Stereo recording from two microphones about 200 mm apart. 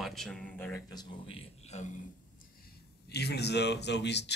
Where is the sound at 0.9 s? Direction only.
30° left (ahead or behind).